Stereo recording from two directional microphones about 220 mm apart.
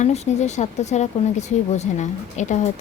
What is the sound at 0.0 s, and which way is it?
Speech, 30° left (ahead or behind).